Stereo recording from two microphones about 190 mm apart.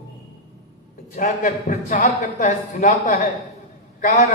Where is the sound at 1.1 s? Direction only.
40° left (ahead or behind).